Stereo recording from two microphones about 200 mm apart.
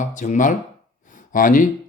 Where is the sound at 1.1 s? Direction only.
40° left (ahead or behind).